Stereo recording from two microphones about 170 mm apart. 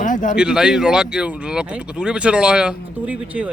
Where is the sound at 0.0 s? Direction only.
50° left (ahead or behind).